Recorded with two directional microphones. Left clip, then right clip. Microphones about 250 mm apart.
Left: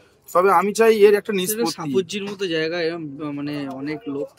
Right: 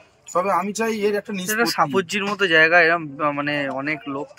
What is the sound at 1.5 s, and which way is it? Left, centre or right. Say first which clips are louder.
Speech: right 4 dB; centre.